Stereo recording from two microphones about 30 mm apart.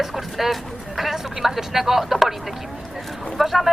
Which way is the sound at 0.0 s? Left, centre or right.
Centre.